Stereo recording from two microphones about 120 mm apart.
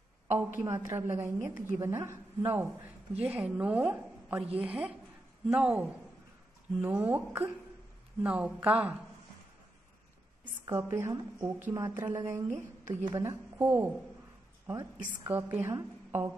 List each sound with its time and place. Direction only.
0.6 s a woman's voice: 25° right (ahead or behind)
10.6 s a woman's voice: 20° right (ahead or behind)
13.6 s a woman's voice: 15° right (ahead or behind)